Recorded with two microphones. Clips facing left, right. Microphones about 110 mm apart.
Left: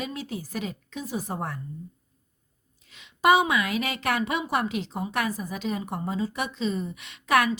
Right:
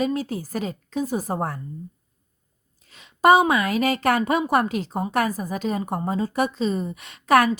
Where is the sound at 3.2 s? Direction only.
45° right (ahead or behind).